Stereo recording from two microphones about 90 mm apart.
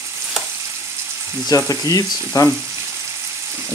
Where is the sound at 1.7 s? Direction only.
45° left (ahead or behind).